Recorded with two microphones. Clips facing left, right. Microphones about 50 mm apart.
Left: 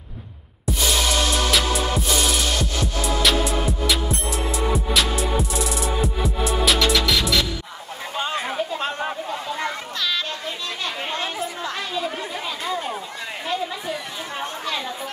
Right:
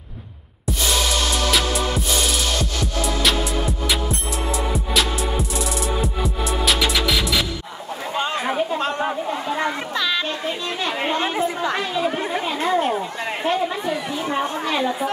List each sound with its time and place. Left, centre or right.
1.5 s music: centre
9.6 s children playing: centre
11.1 s chatter: right
14.3 s a sound: right